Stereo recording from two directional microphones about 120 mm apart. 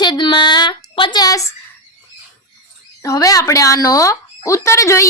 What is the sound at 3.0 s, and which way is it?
Speech, 30° left (ahead or behind).